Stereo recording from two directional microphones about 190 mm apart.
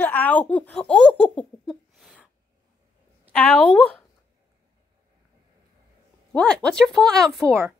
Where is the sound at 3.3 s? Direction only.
5° left (ahead or behind).